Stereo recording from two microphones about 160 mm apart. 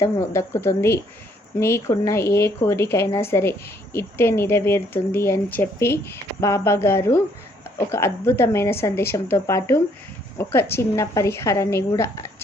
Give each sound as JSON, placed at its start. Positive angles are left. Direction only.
{"t": 0.0, "sound": "speech", "side_deg": 15}